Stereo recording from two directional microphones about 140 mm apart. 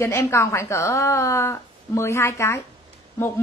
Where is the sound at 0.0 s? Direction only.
20° left (ahead or behind).